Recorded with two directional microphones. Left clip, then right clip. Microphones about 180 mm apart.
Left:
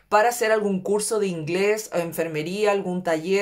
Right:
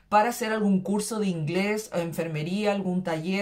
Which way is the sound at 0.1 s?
35° left (ahead or behind).